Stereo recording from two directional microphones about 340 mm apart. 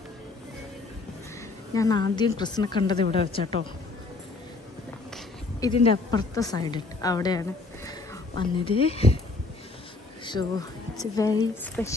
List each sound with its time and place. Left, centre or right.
1.7 s a woman's voice: centre
5.1 s a woman's voice: centre
10.4 s speech: right
11.0 s a woman's voice: centre